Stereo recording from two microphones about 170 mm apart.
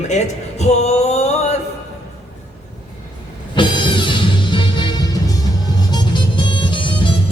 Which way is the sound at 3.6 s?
30° left (ahead or behind).